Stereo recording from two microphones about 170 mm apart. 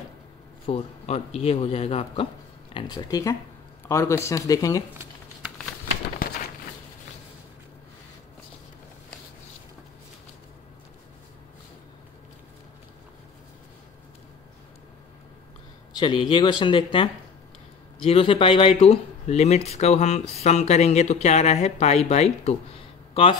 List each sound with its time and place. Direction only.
0.7 s speech: 40° left (ahead or behind)
2.7 s speech: 25° left (ahead or behind)
16.0 s speech: 30° left (ahead or behind)